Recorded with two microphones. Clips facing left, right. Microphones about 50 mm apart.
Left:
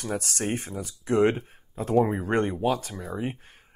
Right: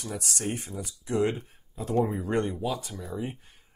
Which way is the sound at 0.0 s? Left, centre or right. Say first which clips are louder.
Left 3 dB; left.